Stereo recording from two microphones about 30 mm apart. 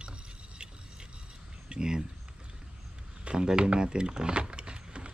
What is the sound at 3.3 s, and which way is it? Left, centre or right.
Speech, right.